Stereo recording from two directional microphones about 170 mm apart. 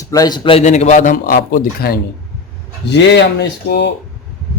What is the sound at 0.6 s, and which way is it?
A man's voice, 45° left (ahead or behind).